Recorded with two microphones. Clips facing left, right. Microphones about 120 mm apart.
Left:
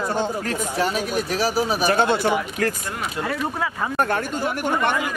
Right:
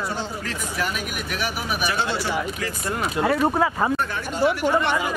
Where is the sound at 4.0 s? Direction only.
50° left (ahead or behind).